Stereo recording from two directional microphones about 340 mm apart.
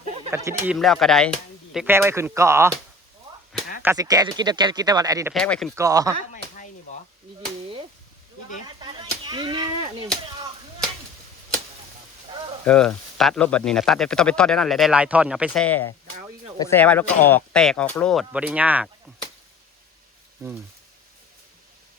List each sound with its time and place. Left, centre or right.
0.3 s speech: centre
3.8 s speech: centre
5.3 s speech: centre
5.8 s speech: centre
6.9 s chop: left
8.6 s a sound: centre
12.6 s speech: centre